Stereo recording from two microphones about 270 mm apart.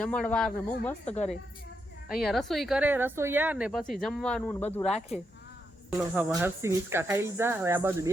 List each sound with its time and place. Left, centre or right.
0.0 s speech: centre
2.1 s speech: centre
4.9 s speech: left
6.1 s speech: centre